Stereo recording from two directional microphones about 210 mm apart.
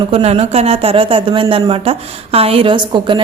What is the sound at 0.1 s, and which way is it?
Speech, 30° right (ahead or behind).